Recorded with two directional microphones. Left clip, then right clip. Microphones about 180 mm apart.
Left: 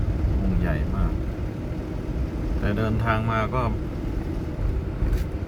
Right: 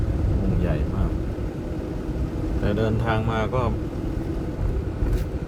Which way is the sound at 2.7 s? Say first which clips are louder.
Even; 40° left (ahead or behind).